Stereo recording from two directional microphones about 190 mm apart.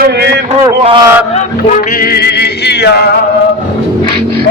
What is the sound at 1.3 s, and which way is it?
Music, 40° left (ahead or behind).